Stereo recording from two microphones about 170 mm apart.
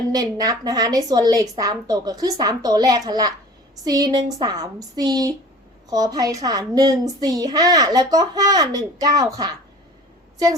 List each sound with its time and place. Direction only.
0.1 s a child's voice: 20° right (ahead or behind)